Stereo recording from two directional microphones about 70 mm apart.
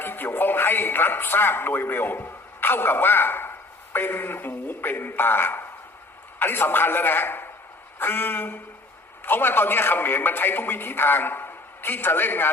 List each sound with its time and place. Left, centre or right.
0.0 s a man's voice: left